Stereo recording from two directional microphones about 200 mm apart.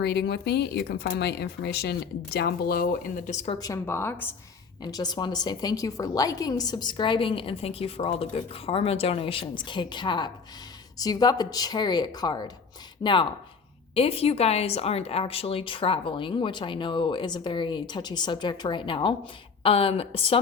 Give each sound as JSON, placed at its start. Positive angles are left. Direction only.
{"t": 0.0, "sound": "speech", "side_deg": 55}
{"t": 3.6, "sound": "a woman's voice", "side_deg": 15}